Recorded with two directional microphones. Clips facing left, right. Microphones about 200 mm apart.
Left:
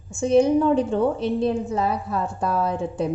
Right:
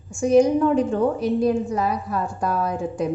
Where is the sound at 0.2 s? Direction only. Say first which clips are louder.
Right 1 dB; 25° left (ahead or behind).